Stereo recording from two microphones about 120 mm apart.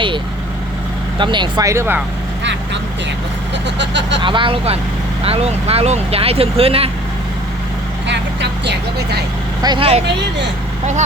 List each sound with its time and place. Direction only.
1.2 s speech: 40° right (ahead or behind)
1.6 s speech: 25° right (ahead or behind)
4.2 s speech: 45° right (ahead or behind)
9.6 s speech: 35° right (ahead or behind)